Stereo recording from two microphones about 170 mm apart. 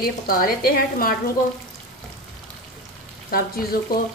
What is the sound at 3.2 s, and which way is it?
Speech, 60° left (ahead or behind).